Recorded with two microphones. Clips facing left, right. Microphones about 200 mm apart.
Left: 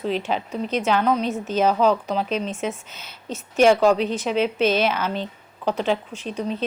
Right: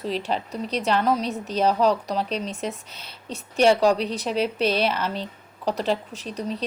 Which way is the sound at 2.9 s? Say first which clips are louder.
Left 3 dB; 35° right (ahead or behind).